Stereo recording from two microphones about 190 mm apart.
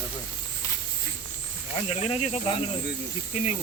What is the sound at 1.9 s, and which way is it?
Speech, 35° left (ahead or behind).